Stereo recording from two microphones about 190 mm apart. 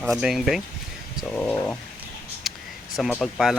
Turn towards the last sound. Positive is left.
turn(degrees=0)  # may be behind; listen again after turning